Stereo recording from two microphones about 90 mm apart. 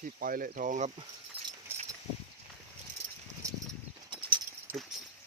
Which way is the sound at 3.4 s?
35° right (ahead or behind).